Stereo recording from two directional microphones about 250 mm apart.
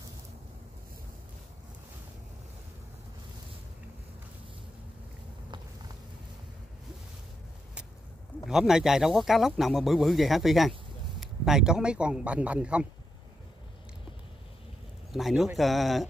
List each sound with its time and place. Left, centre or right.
8.5 s a man's voice: centre
15.1 s speech: centre